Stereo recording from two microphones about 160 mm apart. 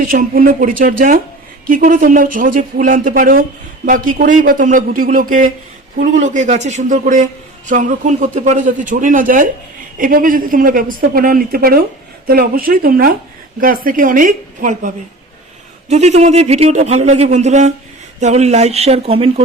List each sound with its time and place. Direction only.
0.0 s a woman's voice: 55° right (ahead or behind); by 19.3 s 35° right (ahead or behind)